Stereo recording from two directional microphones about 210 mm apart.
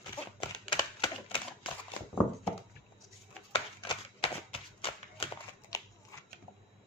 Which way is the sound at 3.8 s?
25° left (ahead or behind).